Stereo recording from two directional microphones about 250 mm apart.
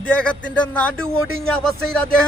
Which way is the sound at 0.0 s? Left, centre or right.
Centre.